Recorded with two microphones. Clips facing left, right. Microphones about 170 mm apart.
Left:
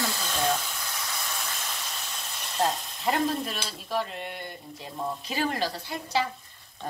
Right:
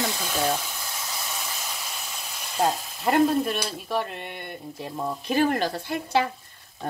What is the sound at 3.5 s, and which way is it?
Frying, 60° right (ahead or behind).